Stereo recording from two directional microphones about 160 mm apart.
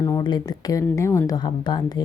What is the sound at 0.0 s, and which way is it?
Speech, 25° left (ahead or behind).